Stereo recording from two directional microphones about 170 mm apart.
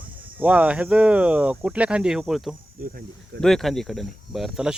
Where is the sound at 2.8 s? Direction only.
60° right (ahead or behind).